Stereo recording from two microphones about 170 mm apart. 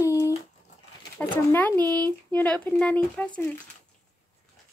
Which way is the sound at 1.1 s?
10° left (ahead or behind).